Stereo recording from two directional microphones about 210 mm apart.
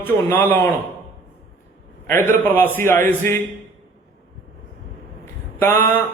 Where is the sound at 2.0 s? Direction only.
10° left (ahead or behind).